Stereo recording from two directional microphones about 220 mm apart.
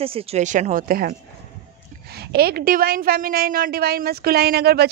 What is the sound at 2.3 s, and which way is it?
Speech, 45° right (ahead or behind).